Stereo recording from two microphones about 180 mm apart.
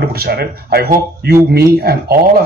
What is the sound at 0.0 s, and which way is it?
Speech, 60° right (ahead or behind).